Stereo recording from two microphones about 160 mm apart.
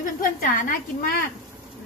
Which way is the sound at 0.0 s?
60° left (ahead or behind).